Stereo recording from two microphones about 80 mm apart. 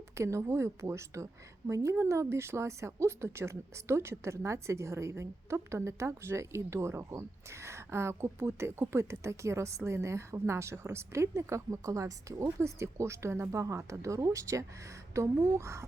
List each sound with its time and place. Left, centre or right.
0.2 s a woman's voice: right